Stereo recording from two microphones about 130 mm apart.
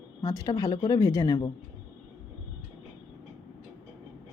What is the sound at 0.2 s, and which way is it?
Speech, 30° left (ahead or behind).